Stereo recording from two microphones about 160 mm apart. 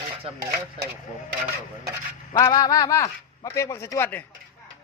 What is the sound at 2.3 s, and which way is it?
Speech, 20° left (ahead or behind).